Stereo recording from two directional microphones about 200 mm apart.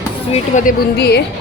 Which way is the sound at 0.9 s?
55° left (ahead or behind).